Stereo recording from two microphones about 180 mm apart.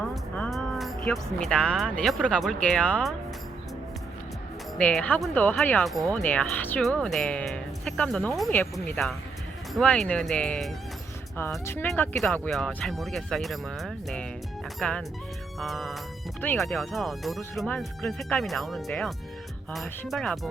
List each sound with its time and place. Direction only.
0.0 s speech: 5° left (ahead or behind)
4.8 s speech: 5° left (ahead or behind)